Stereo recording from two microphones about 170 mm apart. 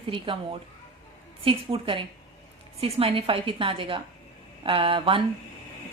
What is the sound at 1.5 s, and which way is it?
Speech, 30° right (ahead or behind).